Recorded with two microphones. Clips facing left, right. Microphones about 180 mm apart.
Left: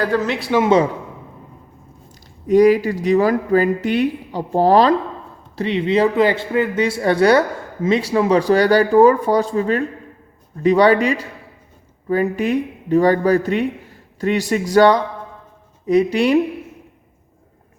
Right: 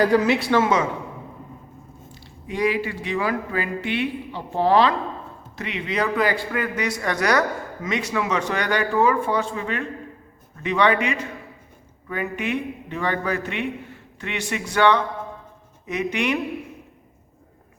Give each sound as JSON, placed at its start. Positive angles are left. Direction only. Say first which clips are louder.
{"t": 0.0, "sound": "speech", "louder": "right 1 dB", "side_deg": -10}
{"t": 2.5, "sound": "a man's voice", "louder": "left 11 dB", "side_deg": 40}